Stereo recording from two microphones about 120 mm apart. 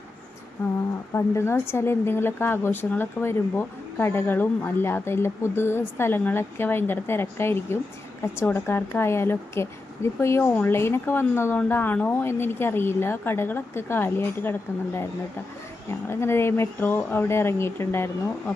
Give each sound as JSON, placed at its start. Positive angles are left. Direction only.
{"t": 1.1, "sound": "a woman's voice", "side_deg": 20}
{"t": 15.9, "sound": "a woman's voice", "side_deg": 20}